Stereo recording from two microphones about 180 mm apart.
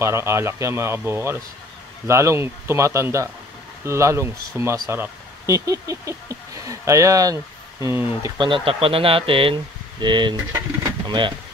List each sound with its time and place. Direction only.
0.0 s speech: 15° right (ahead or behind)
8.4 s speech: 25° right (ahead or behind)